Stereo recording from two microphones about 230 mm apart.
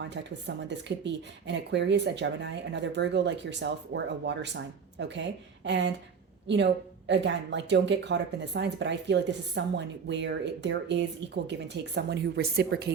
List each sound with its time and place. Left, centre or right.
0.1 s speech: right
7.1 s speech: right